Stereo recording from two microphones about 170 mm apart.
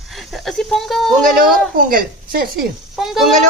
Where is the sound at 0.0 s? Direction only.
Centre (ahead or behind).